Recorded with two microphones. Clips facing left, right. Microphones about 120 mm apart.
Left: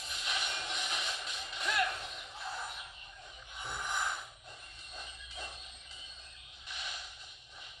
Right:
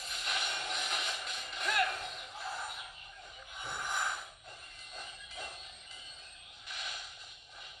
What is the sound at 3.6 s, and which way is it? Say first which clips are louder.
Gasp: even; centre (ahead or behind).